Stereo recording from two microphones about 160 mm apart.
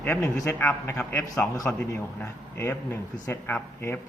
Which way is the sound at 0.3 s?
15° left (ahead or behind).